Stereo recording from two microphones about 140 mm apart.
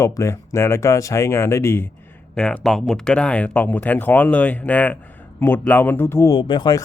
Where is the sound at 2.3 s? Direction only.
5° left (ahead or behind).